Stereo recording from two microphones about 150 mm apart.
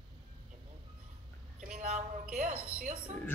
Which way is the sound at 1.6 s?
55° right (ahead or behind).